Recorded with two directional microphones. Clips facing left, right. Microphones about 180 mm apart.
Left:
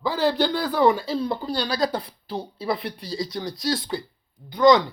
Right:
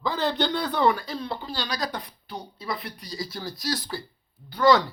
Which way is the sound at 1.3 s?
40° left (ahead or behind).